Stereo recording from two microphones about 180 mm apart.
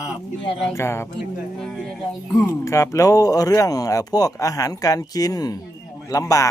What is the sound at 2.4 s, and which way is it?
Speech, 15° left (ahead or behind).